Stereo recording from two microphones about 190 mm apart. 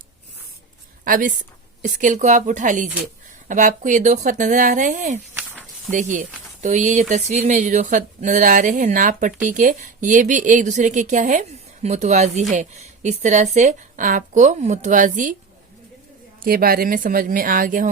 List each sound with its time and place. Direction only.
1.0 s a woman's voice: 45° right (ahead or behind)
5.3 s snake: 10° right (ahead or behind)
5.9 s speech: 40° right (ahead or behind)
16.4 s a woman's voice: 50° right (ahead or behind)